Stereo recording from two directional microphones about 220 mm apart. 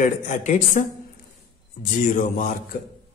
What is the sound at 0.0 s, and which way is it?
Speech, 35° left (ahead or behind).